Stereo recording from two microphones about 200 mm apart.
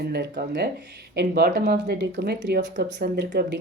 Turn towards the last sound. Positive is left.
turn(degrees=-55)  # may be behind; listen again after turning